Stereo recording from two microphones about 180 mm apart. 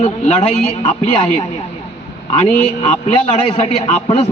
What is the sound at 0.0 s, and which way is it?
Speech, 40° left (ahead or behind).